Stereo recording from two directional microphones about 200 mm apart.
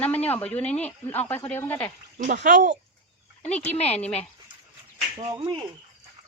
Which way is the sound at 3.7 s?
30° left (ahead or behind).